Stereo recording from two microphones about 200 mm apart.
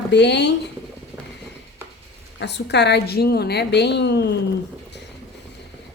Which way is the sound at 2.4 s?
55° left (ahead or behind).